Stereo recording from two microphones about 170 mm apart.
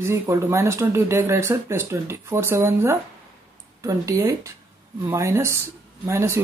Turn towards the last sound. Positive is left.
turn(degrees=-15)  # may be behind; listen again after turning